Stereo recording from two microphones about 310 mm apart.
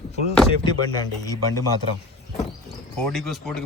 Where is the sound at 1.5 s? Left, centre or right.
Left.